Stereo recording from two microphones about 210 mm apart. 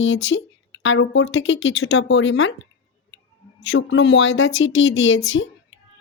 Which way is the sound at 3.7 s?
60° left (ahead or behind).